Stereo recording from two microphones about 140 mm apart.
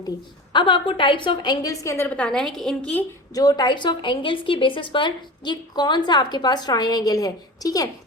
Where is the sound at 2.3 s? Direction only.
5° left (ahead or behind).